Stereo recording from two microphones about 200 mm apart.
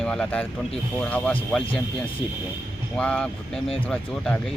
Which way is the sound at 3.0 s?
5° left (ahead or behind).